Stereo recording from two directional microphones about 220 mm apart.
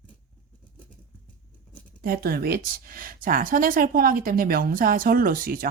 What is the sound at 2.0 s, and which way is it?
A woman's voice, 40° right (ahead or behind).